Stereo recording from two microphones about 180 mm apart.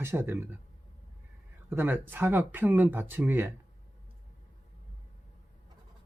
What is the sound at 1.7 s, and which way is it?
Speech, 10° right (ahead or behind).